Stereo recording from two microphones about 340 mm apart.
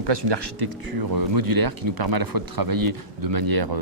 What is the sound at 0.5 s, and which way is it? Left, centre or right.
Speech, right.